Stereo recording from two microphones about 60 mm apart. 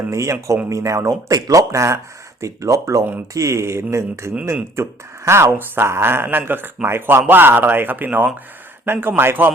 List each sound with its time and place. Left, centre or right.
0.1 s speech: right